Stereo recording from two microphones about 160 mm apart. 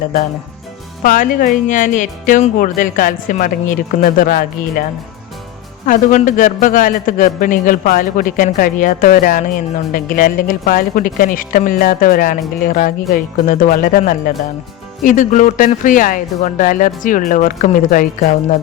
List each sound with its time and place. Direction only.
1.0 s a man's voice: 60° left (ahead or behind)
5.8 s a man's voice: 55° left (ahead or behind)